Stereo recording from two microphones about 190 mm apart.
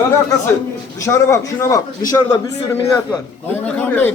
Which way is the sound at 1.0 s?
15° left (ahead or behind).